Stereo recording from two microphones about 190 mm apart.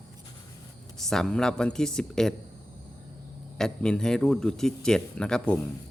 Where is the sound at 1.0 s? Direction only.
Centre (ahead or behind).